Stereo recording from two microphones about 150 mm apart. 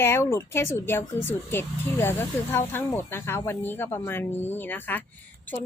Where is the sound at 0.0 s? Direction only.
15° left (ahead or behind).